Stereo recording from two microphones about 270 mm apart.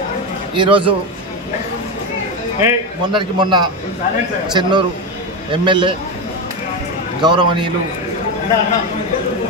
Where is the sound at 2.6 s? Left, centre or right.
Centre.